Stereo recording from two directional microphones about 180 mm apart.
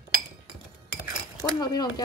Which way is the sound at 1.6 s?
25° left (ahead or behind).